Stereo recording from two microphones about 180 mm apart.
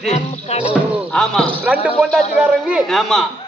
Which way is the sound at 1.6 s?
5° right (ahead or behind).